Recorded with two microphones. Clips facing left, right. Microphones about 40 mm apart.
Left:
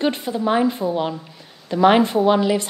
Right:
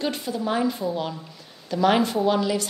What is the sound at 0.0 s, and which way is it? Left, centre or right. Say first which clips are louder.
A woman's voice: left 6 dB; left.